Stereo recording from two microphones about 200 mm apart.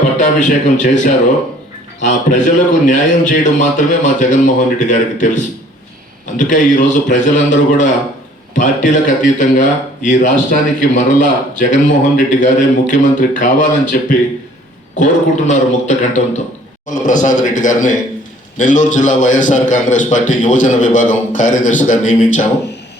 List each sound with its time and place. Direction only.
0.2 s a man's voice: 40° left (ahead or behind)